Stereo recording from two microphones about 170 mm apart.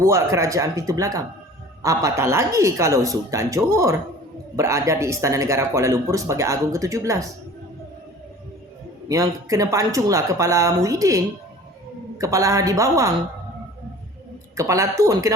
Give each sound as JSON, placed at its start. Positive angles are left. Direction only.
{"t": 0.0, "sound": "speech", "side_deg": -15}
{"t": 9.0, "sound": "speech", "side_deg": -20}
{"t": 14.5, "sound": "speech", "side_deg": -20}